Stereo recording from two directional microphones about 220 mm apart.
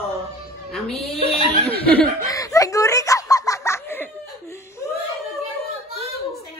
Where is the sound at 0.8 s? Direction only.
Centre (ahead or behind).